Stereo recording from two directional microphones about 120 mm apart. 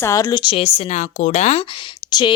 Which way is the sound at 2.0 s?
40° left (ahead or behind).